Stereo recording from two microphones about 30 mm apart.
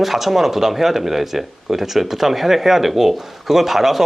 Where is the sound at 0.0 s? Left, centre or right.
Centre.